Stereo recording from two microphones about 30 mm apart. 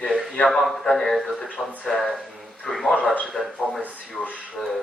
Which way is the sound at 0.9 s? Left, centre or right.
Centre.